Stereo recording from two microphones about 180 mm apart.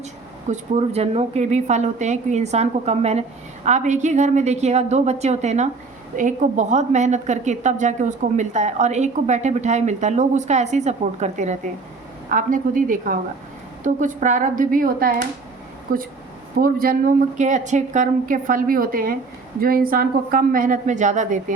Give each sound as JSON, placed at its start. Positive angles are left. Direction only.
{"t": 0.4, "sound": "a woman's voice", "side_deg": -40}